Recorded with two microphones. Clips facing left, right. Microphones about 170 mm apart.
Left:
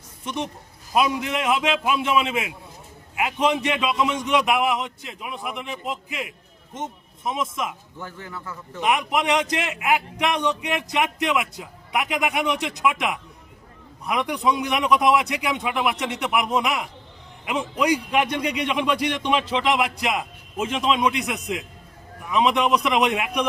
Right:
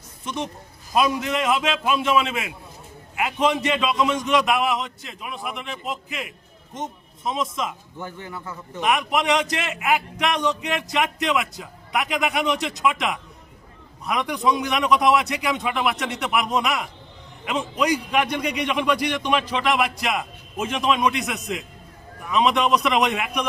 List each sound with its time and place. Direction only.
0.3 s a man's voice: 15° left (ahead or behind)
7.3 s a man's voice: 10° left (ahead or behind)
7.9 s a man's voice: 20° right (ahead or behind)
8.8 s a man's voice: 15° left (ahead or behind)